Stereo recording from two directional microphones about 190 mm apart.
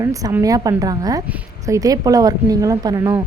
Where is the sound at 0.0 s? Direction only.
15° right (ahead or behind).